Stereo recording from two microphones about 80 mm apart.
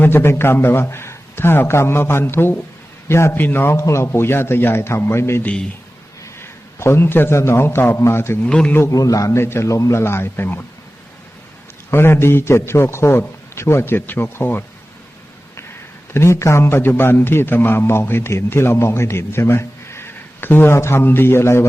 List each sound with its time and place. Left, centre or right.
0.0 s a man's voice: left
8.4 s a man's voice: centre
8.9 s a man's voice: left
9.4 s a man's voice: left
11.9 s a man's voice: left
16.1 s a man's voice: left